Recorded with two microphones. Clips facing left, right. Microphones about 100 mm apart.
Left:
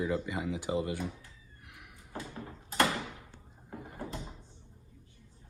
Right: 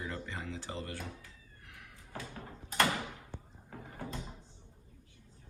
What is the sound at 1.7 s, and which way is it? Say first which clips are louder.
Door: left 1 dB; 20° left (ahead or behind).